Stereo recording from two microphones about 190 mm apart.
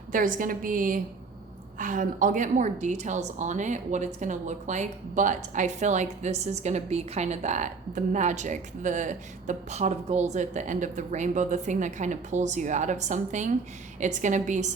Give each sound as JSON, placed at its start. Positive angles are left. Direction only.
{"t": 0.1, "sound": "a woman's voice", "side_deg": -45}